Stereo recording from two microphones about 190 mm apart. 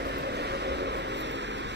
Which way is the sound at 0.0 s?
60° right (ahead or behind).